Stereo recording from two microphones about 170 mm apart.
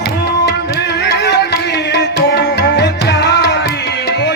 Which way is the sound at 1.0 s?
80° left.